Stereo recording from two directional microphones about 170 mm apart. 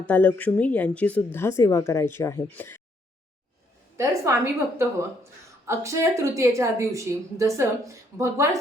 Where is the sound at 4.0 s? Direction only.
20° right (ahead or behind).